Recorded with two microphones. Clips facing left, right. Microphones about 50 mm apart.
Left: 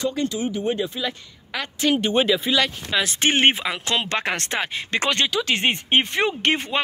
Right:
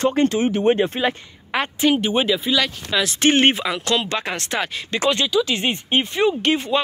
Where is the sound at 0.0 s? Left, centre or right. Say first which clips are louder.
Right 6 dB; right.